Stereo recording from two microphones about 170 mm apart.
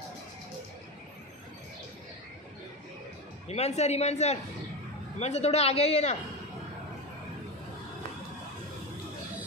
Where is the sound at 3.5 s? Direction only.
40° left (ahead or behind).